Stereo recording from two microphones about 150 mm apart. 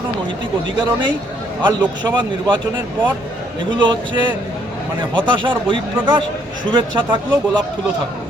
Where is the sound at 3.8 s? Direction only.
30° right (ahead or behind).